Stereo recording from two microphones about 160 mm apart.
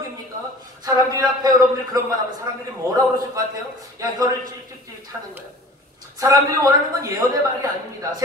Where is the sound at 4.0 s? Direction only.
20° right (ahead or behind).